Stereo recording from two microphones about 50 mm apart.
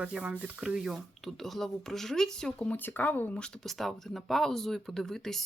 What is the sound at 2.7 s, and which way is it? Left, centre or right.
Speech, left.